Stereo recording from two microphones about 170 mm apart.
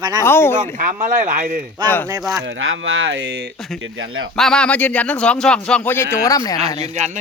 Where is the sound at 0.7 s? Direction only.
50° right (ahead or behind).